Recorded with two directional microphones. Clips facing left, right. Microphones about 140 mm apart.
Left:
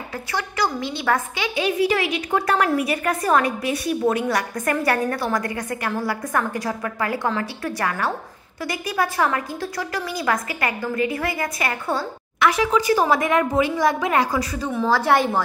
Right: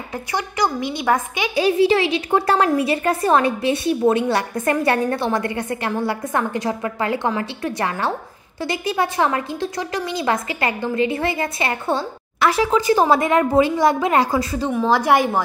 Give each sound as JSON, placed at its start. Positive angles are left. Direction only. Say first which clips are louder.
{"t": 0.3, "sound": "a woman's voice", "louder": "right 2 dB", "side_deg": -15}
{"t": 1.5, "sound": "a woman's voice", "louder": "right 5 dB", "side_deg": -30}
{"t": 14.7, "sound": "a woman's voice", "louder": "right 2 dB", "side_deg": -15}